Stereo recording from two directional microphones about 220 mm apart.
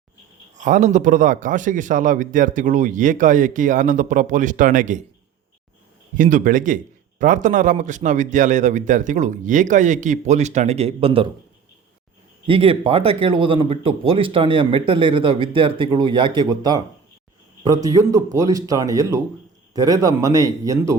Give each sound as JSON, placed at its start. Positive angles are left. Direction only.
{"t": 0.5, "sound": "a man's voice", "side_deg": -35}
{"t": 6.1, "sound": "a man's voice", "side_deg": -35}
{"t": 12.5, "sound": "speech", "side_deg": -25}